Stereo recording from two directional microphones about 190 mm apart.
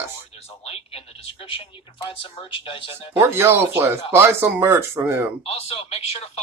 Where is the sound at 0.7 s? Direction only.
30° left (ahead or behind).